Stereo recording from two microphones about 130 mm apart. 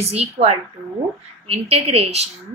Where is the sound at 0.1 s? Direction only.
50° right (ahead or behind).